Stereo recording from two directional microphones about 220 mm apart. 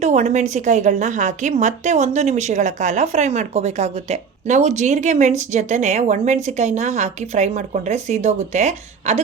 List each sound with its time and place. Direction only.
0.0 s a woman's voice: 30° right (ahead or behind)